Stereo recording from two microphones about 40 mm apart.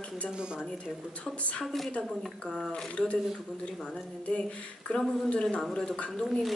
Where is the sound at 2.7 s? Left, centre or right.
Left.